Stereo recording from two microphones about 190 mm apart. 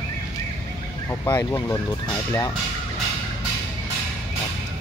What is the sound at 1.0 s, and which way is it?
Speech, 15° left (ahead or behind).